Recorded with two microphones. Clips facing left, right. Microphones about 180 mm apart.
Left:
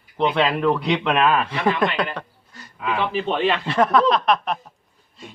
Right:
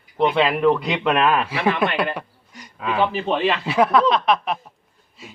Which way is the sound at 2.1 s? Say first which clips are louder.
Right 2 dB; 15° right (ahead or behind).